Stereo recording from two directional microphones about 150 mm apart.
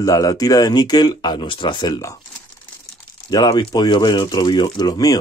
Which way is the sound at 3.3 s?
25° left (ahead or behind).